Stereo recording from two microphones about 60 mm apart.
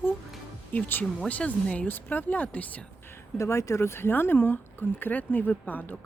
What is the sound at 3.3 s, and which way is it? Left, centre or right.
Speech, left.